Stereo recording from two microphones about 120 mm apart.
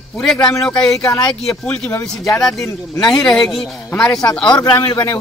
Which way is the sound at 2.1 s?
Centre (ahead or behind).